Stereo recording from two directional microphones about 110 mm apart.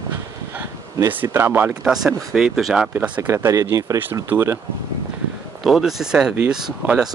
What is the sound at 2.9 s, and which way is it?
Speech, 15° right (ahead or behind).